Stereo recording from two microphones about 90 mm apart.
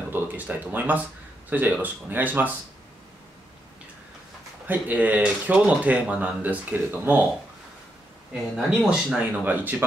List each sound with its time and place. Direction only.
0.1 s speech: 20° right (ahead or behind)
4.6 s speech: 20° right (ahead or behind)
8.3 s speech: 5° right (ahead or behind)